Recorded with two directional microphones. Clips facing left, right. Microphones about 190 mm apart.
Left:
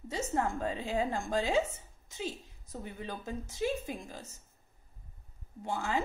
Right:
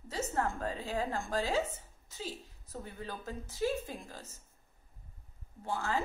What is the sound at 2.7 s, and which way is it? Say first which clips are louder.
A woman's voice: left 2 dB; 20° left (ahead or behind).